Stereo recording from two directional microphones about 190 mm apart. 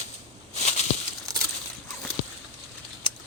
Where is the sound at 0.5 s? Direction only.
35° left (ahead or behind).